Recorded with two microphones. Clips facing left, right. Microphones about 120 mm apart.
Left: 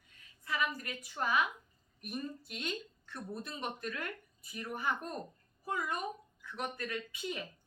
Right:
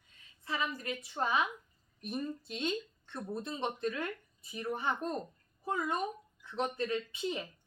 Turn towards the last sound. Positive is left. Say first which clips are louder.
# right 4 dB
turn(degrees=-25)  # may be behind; listen again after turning